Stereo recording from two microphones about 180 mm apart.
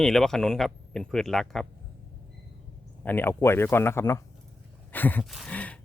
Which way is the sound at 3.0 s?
10° left (ahead or behind).